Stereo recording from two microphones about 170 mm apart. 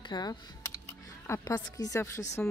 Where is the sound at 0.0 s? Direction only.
25° left (ahead or behind).